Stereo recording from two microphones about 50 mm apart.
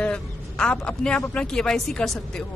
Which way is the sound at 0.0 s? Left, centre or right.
Left.